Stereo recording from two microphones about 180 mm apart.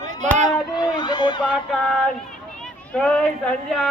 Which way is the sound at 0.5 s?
25° left (ahead or behind).